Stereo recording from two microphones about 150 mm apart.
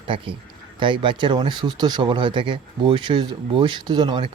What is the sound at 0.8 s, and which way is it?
Speech, 30° right (ahead or behind).